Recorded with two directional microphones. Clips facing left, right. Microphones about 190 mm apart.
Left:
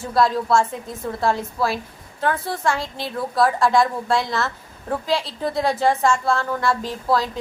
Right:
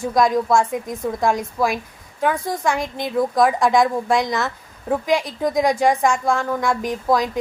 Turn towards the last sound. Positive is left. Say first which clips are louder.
# right 2 dB
turn(degrees=-15)  # may be behind; listen again after turning